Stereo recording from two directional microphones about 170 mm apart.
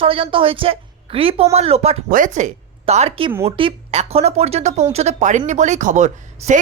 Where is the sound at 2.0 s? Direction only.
50° right (ahead or behind).